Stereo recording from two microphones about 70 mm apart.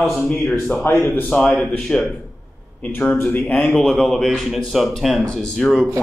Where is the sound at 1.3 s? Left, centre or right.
Centre.